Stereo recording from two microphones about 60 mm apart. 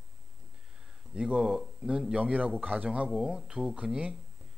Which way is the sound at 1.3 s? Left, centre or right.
Centre.